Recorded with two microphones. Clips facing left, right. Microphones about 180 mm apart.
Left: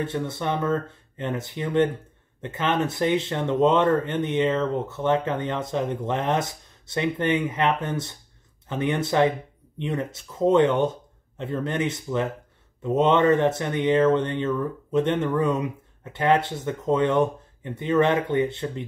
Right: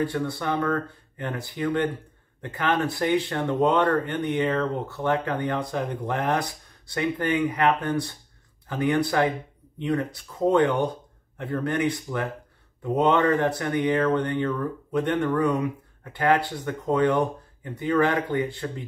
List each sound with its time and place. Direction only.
0.0 s speech: 20° left (ahead or behind)